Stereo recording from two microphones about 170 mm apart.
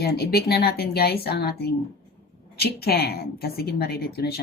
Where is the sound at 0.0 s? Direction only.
65° left (ahead or behind).